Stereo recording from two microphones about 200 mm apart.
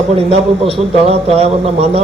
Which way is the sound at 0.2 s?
30° right (ahead or behind).